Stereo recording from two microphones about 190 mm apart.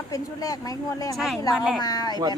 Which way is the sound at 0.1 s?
20° left (ahead or behind).